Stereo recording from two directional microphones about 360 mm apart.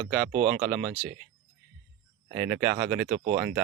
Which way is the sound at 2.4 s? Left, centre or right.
Centre.